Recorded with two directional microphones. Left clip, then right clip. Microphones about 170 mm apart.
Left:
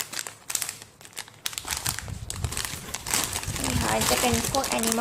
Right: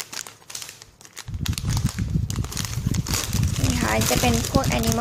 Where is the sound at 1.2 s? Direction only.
15° right (ahead or behind).